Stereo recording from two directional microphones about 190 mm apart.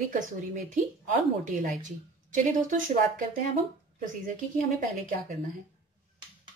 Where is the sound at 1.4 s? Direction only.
45° right (ahead or behind).